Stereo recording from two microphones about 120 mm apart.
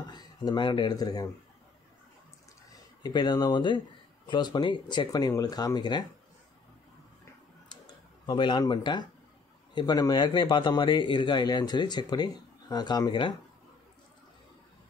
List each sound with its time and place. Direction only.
0.1 s speech: 35° left (ahead or behind)
3.0 s speech: 35° left (ahead or behind)
8.3 s speech: 40° left (ahead or behind)